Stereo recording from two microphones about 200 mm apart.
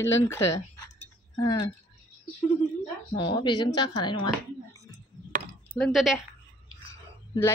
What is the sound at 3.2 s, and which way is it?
Speech, 25° left (ahead or behind).